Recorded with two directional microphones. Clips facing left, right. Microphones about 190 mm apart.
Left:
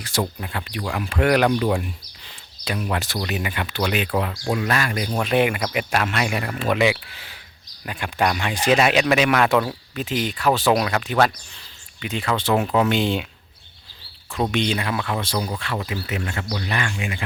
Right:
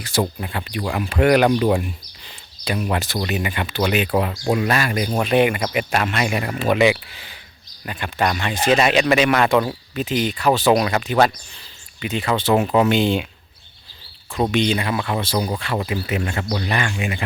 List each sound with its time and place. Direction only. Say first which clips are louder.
0.0 s speech: right 3 dB; 5° right (ahead or behind)
14.5 s speech: right 4 dB; centre (ahead or behind)
15.4 s speech: right 4 dB; 15° right (ahead or behind)